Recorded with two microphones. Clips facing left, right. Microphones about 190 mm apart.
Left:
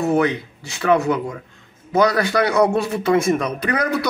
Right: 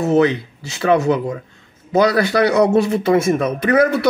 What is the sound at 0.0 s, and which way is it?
A man's voice, 25° right (ahead or behind).